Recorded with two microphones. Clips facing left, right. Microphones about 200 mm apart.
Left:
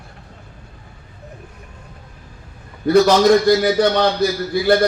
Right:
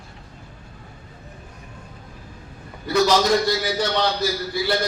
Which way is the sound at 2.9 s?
55° left (ahead or behind).